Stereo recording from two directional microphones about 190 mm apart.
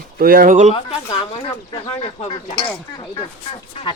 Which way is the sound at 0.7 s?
30° left (ahead or behind).